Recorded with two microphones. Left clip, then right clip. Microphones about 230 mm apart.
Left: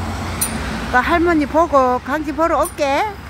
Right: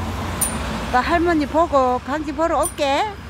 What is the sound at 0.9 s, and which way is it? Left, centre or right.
Speech, centre.